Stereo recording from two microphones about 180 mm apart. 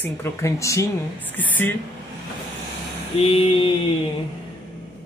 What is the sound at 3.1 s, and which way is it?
Mantra, 30° left (ahead or behind).